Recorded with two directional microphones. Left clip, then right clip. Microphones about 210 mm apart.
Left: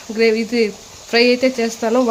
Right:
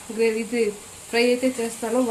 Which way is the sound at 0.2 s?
55° left (ahead or behind).